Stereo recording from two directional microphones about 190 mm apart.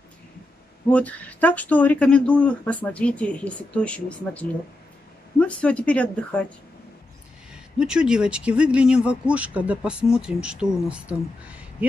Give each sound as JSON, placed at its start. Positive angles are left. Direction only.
{"t": 0.8, "sound": "speech", "side_deg": 10}
{"t": 7.5, "sound": "speech", "side_deg": -5}